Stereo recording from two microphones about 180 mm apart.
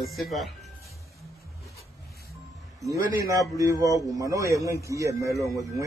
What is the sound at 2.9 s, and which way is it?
A man's voice, 15° right (ahead or behind).